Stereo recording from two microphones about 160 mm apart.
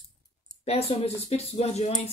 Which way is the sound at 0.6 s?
40° left (ahead or behind).